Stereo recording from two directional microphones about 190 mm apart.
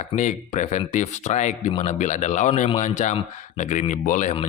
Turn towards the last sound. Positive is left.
turn(degrees=35)  # may be behind; listen again after turning